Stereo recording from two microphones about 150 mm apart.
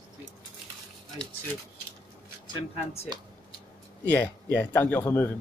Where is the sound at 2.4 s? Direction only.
35° left (ahead or behind).